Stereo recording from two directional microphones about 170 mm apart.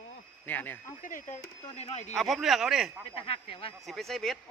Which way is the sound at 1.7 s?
35° left (ahead or behind).